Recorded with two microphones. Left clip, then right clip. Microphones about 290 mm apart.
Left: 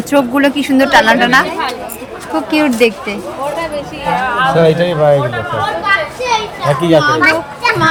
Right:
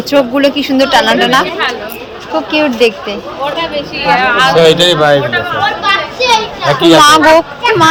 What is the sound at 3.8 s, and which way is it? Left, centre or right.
Speech, left.